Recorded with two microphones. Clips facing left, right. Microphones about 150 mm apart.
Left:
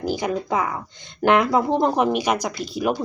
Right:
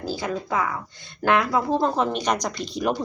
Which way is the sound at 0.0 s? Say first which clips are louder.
Left 4 dB; 15° left (ahead or behind).